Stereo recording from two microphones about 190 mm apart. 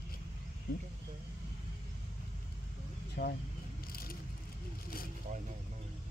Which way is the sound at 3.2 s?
60° left (ahead or behind).